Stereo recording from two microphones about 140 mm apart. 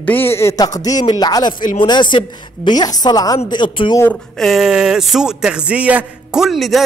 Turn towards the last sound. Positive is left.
turn(degrees=0)  # may be behind; listen again after turning